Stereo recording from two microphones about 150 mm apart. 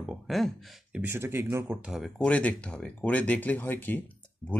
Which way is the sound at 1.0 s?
15° right (ahead or behind).